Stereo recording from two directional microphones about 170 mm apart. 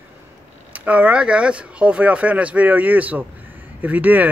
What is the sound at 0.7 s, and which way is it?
Speech, 10° right (ahead or behind).